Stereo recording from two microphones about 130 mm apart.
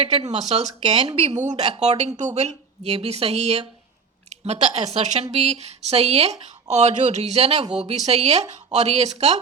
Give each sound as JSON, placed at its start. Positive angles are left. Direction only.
{"t": 0.3, "sound": "speech", "side_deg": -60}
{"t": 1.4, "sound": "speech", "side_deg": -65}